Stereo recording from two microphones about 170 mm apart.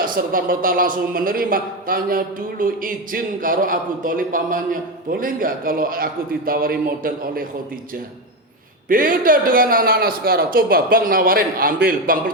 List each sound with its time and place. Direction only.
0.0 s a man's voice: 55° right (ahead or behind)
8.9 s a man's voice: 55° right (ahead or behind)